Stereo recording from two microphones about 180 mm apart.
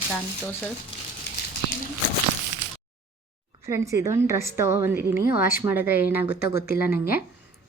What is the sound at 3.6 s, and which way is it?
A woman's voice, 15° right (ahead or behind).